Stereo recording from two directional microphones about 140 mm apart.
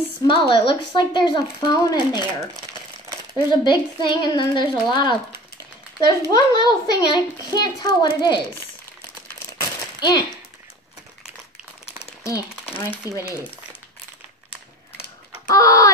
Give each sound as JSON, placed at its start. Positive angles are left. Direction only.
{"t": 0.3, "sound": "speech", "side_deg": 35}
{"t": 3.3, "sound": "a child's voice", "side_deg": 35}
{"t": 9.6, "sound": "coin", "side_deg": 30}
{"t": 12.2, "sound": "a sound", "side_deg": 20}
{"t": 13.0, "sound": "a child's voice", "side_deg": 25}
{"t": 15.4, "sound": "chicken", "side_deg": 25}